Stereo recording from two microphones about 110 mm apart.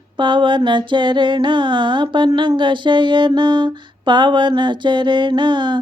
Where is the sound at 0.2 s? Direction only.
45° right (ahead or behind).